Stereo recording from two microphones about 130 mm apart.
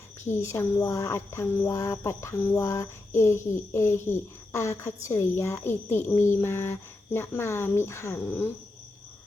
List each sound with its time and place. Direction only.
0.3 s speech: 20° left (ahead or behind)